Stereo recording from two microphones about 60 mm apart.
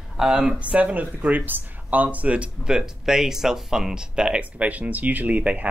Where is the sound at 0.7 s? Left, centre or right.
Right.